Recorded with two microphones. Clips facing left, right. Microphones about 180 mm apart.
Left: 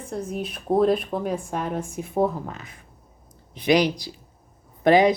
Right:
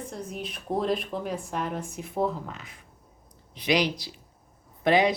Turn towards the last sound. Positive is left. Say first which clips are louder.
# left 5 dB
turn(degrees=45)  # may be behind; listen again after turning